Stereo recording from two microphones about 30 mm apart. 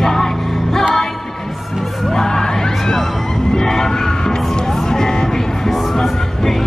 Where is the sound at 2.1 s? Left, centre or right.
Centre.